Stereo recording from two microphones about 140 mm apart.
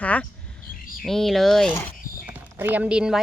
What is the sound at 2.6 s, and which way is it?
Speech, 10° right (ahead or behind).